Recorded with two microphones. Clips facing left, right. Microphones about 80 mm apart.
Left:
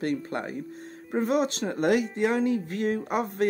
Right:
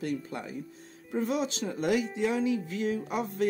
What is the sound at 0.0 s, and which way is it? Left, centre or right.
Speech, left.